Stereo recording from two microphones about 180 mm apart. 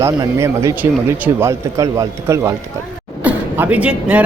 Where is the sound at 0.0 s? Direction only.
15° right (ahead or behind).